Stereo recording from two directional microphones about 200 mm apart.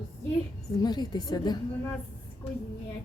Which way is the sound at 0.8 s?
20° left (ahead or behind).